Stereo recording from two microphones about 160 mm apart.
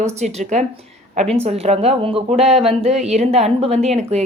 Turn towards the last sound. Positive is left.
turn(degrees=-40)  # may be behind; listen again after turning